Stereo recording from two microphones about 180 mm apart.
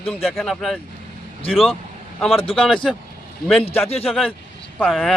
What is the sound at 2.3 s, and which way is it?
Speech, 30° left (ahead or behind).